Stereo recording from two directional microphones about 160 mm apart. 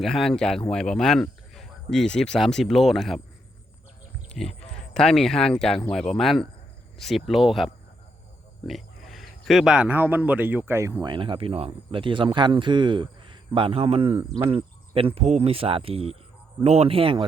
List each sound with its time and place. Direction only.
0.0 s speech: 5° left (ahead or behind)
4.3 s a man's voice: centre (ahead or behind); by 17.2 s 35° right (ahead or behind)